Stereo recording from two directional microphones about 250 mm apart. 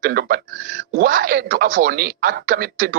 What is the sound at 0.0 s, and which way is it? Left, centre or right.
Speech, right.